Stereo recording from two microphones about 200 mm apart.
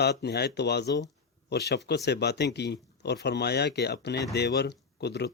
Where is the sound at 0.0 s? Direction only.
55° left (ahead or behind).